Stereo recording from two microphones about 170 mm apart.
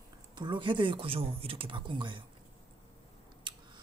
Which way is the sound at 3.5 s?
25° right (ahead or behind).